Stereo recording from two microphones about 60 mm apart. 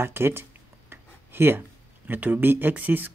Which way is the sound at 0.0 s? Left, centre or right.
Right.